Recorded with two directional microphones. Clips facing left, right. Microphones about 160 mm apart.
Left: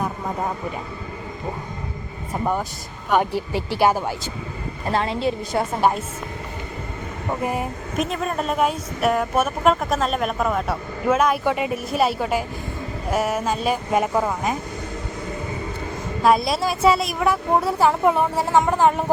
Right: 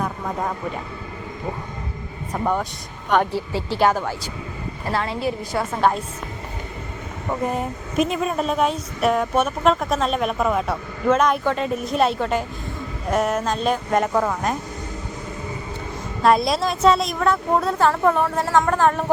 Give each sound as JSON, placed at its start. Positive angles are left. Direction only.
{"t": 2.3, "sound": "a woman's voice", "side_deg": 5}
{"t": 4.9, "sound": "a woman's voice", "side_deg": 20}
{"t": 5.8, "sound": "a woman's voice", "side_deg": 5}
{"t": 7.4, "sound": "a woman's voice", "side_deg": 5}
{"t": 16.2, "sound": "a woman's voice", "side_deg": 0}